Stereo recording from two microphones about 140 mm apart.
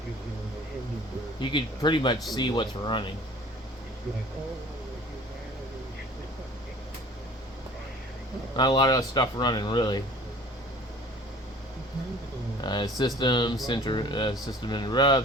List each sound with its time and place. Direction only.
1.4 s speech: 35° left (ahead or behind)
8.5 s speech: 30° left (ahead or behind)
12.6 s speech: 30° left (ahead or behind)